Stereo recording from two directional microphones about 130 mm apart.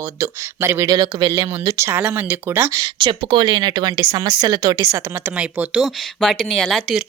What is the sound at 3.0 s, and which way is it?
Speech, 40° right (ahead or behind).